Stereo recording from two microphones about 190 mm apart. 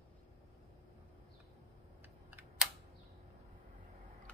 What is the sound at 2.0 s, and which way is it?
Computer keyboard, 10° right (ahead or behind).